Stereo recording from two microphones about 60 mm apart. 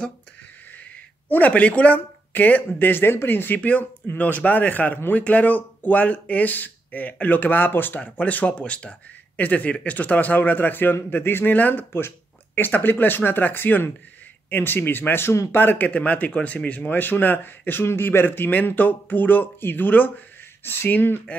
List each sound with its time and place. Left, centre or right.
0.7 s speech: left